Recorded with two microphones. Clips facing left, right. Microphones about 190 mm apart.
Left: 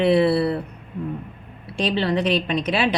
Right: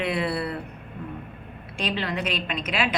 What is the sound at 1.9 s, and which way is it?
Speech, 30° left (ahead or behind).